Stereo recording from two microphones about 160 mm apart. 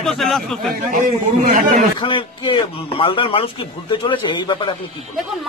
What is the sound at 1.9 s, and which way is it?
A man's voice, 30° left (ahead or behind).